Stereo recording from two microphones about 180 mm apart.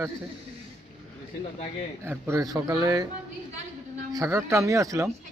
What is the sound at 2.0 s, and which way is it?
A man's voice, 15° right (ahead or behind).